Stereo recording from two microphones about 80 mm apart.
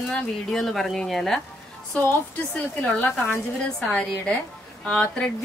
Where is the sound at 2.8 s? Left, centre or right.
Left.